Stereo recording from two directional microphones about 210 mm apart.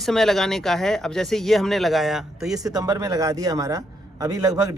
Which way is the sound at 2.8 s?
15° right (ahead or behind).